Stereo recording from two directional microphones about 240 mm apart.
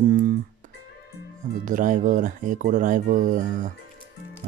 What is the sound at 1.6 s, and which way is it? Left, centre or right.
Speech, right.